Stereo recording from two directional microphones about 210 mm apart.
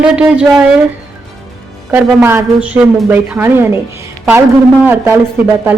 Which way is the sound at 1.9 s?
10° right (ahead or behind).